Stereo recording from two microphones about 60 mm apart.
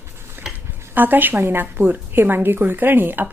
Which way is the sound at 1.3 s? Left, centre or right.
Right.